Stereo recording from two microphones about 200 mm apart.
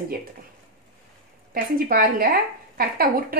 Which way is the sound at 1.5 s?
45° right (ahead or behind).